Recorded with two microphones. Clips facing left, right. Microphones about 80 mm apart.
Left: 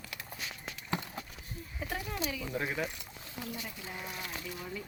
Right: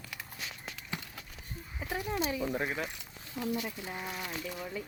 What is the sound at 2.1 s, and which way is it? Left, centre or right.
Speech, right.